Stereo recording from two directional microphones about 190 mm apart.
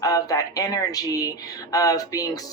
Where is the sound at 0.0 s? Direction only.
20° left (ahead or behind).